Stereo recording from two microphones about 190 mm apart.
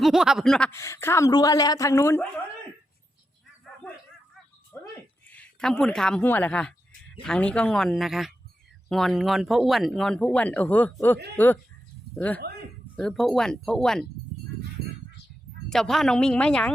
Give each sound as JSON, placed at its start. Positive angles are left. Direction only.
{"t": 0.0, "sound": "speech", "side_deg": 0}
{"t": 0.7, "sound": "a woman's voice", "side_deg": 15}
{"t": 4.7, "sound": "a sound", "side_deg": 15}
{"t": 5.3, "sound": "a woman's voice", "side_deg": 5}
{"t": 15.7, "sound": "speech", "side_deg": 0}